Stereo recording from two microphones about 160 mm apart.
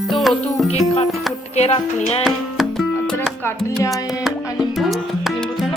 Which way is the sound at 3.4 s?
15° left (ahead or behind).